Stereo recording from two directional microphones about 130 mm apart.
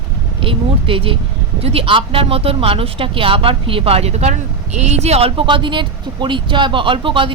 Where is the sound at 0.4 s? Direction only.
45° right (ahead or behind).